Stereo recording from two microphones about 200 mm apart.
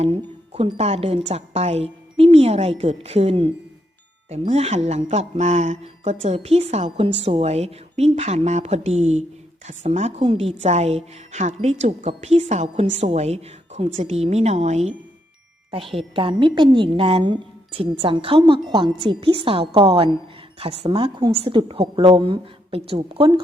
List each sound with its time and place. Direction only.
0.0 s a woman's voice: 30° right (ahead or behind)